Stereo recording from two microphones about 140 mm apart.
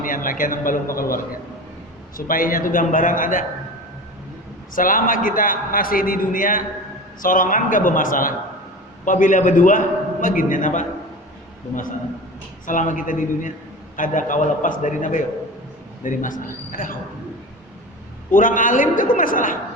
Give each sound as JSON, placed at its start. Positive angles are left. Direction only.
{"t": 0.0, "sound": "a man's voice", "side_deg": 75}
{"t": 2.1, "sound": "a man's voice", "side_deg": 85}
{"t": 4.7, "sound": "a man's voice", "side_deg": 75}
{"t": 9.0, "sound": "a man's voice", "side_deg": 70}
{"t": 12.6, "sound": "a man's voice", "side_deg": 65}
{"t": 18.3, "sound": "a man's voice", "side_deg": 75}